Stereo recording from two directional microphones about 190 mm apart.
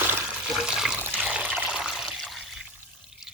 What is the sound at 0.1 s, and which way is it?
Toilet flush, 5° right (ahead or behind).